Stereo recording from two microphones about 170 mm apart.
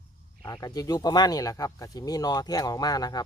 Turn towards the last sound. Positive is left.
turn(degrees=25)  # may be behind; listen again after turning